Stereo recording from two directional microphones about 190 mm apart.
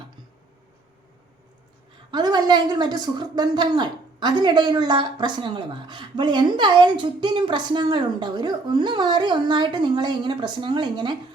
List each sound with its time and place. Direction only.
2.0 s a woman's voice: 25° right (ahead or behind)